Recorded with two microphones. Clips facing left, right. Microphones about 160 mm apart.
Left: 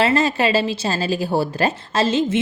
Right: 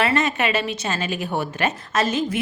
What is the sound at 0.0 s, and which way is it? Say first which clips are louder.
A woman's voice: left 3 dB; 30° left (ahead or behind).